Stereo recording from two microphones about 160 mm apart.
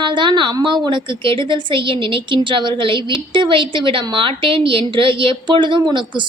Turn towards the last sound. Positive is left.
turn(degrees=-30)  # may be behind; listen again after turning